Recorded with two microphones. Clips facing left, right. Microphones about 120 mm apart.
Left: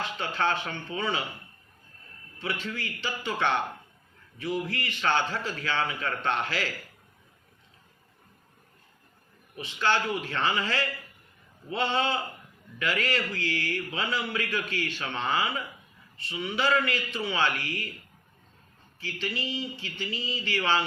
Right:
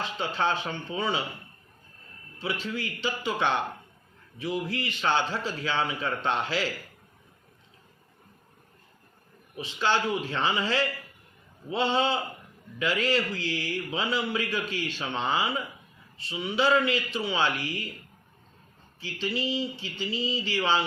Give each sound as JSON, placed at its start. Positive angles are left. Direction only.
{"t": 0.2, "sound": "a man's voice", "side_deg": -20}
{"t": 2.4, "sound": "a man's voice", "side_deg": -20}
{"t": 9.7, "sound": "a man's voice", "side_deg": -15}
{"t": 18.9, "sound": "a man's voice", "side_deg": -20}